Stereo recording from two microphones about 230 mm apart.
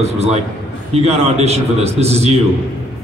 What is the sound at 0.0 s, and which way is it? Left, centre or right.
A man's voice, right.